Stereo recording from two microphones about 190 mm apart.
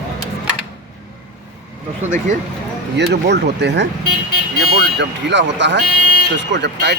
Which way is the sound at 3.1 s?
65° right (ahead or behind).